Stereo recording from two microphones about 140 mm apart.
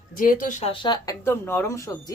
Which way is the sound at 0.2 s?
75° left (ahead or behind).